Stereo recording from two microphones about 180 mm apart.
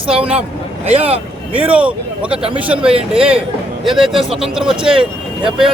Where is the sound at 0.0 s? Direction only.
30° right (ahead or behind).